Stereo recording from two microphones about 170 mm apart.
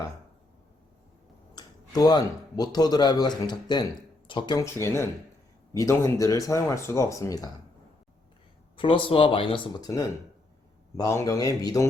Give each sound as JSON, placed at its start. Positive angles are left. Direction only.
{"t": 1.5, "sound": "speech", "side_deg": 20}
{"t": 8.7, "sound": "speech", "side_deg": 30}
{"t": 10.9, "sound": "speech", "side_deg": 15}